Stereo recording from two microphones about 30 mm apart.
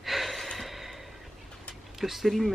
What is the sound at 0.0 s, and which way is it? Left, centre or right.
Gasp, centre.